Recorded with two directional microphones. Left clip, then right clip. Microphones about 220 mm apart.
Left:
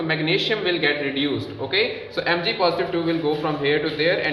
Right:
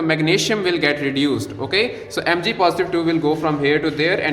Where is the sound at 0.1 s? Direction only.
50° right (ahead or behind).